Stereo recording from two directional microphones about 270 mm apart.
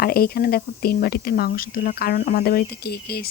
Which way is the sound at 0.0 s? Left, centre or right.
Left.